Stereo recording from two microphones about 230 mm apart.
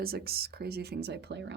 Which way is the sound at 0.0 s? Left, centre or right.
Right.